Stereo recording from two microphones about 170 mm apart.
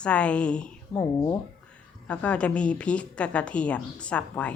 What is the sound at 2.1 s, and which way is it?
A woman's voice, 5° left (ahead or behind).